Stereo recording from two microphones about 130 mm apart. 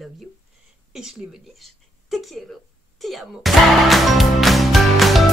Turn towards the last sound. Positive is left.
turn(degrees=0)  # may be behind; listen again after turning